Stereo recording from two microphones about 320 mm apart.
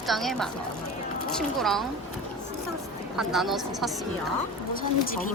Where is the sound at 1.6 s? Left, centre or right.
Centre.